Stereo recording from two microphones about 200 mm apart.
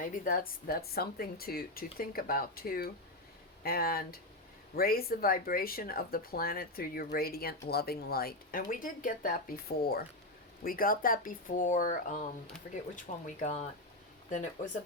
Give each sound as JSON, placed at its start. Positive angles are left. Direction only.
{"t": 0.0, "sound": "speech", "side_deg": 45}